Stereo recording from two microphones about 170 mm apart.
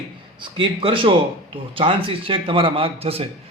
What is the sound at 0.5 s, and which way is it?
A man's voice, 30° right (ahead or behind).